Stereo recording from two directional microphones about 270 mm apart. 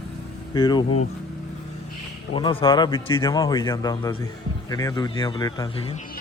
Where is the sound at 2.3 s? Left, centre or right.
Centre.